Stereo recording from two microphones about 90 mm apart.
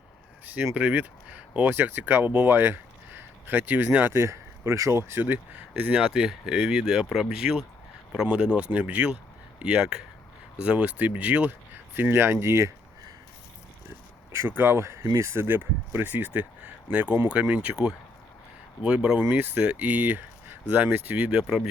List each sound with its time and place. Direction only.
0.4 s speech: 20° right (ahead or behind)
5.2 s speech: 20° right (ahead or behind)
14.3 s speech: 25° right (ahead or behind)